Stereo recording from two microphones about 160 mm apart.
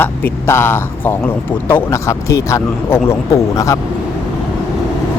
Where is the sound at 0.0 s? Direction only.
10° left (ahead or behind).